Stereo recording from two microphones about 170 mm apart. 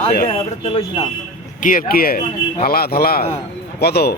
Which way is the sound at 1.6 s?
55° left (ahead or behind).